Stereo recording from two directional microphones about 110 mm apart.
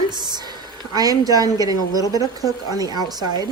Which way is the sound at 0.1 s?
40° right (ahead or behind).